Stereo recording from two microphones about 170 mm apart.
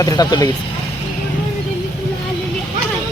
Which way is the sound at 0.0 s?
20° left (ahead or behind).